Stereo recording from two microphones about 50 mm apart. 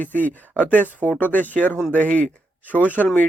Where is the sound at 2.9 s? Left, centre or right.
Left.